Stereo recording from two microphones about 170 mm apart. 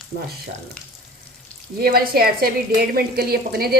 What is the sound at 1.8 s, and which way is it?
A woman's voice, 60° right (ahead or behind).